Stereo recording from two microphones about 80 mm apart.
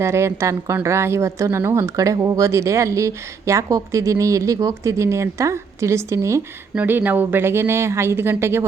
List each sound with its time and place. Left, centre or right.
0.0 s a woman's voice: right
2.4 s a woman's voice: right
6.7 s a woman's voice: right